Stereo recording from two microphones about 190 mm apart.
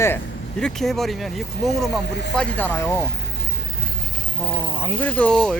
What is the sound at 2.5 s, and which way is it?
Speech, 10° left (ahead or behind).